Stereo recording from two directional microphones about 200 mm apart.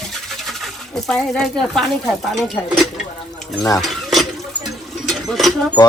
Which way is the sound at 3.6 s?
15° left (ahead or behind).